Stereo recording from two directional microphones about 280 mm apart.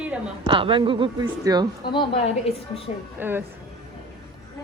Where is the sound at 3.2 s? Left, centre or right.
Centre.